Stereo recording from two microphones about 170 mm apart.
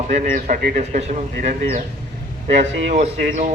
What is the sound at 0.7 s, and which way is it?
Speech, 40° right (ahead or behind).